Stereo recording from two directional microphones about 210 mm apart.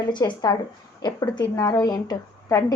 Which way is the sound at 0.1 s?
20° left (ahead or behind).